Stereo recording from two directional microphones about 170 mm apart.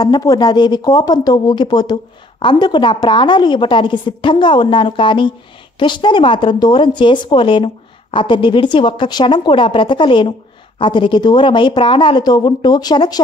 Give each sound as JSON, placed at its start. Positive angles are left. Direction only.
{"t": 0.0, "sound": "a woman's voice", "side_deg": 20}